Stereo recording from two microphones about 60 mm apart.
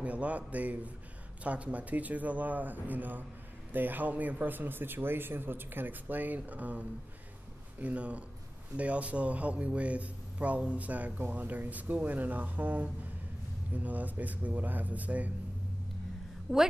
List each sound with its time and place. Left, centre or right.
0.0 s a man's voice: right
7.8 s a man's voice: right
16.5 s a woman's voice: centre